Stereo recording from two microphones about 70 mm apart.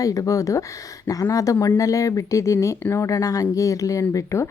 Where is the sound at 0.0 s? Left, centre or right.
Left.